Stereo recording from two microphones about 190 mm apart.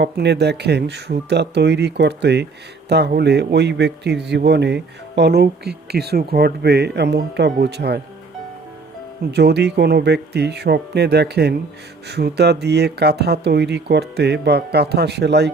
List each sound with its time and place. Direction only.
0.0 s speech: 60° right (ahead or behind)
9.3 s speech: 60° right (ahead or behind)